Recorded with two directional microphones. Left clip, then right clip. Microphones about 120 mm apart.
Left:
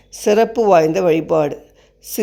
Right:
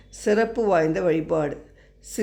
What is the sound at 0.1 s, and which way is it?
Speech, 45° left (ahead or behind).